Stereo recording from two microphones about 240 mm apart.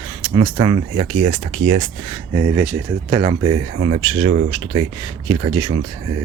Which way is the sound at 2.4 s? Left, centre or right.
Centre.